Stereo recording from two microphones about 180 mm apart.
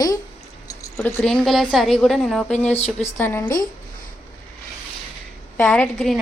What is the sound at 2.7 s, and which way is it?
Speech, 35° left (ahead or behind).